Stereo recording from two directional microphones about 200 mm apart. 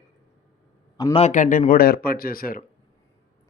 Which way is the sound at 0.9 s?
25° left (ahead or behind).